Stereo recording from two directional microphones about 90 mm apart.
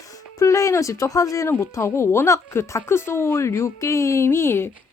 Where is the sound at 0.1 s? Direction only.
35° left (ahead or behind).